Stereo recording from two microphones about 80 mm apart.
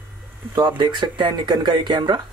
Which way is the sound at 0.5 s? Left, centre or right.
Right.